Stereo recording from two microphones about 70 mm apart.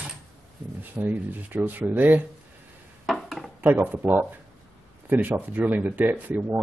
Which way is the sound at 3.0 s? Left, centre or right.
Centre.